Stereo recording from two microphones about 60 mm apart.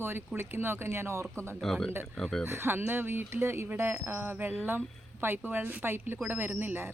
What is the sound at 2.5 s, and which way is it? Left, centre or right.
Speech, right.